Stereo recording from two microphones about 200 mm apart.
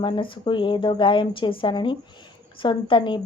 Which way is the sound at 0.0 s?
25° left (ahead or behind).